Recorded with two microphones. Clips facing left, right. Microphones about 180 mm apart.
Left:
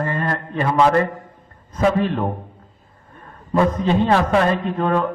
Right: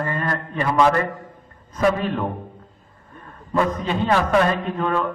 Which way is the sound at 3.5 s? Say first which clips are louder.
Left 4 dB; 30° left (ahead or behind).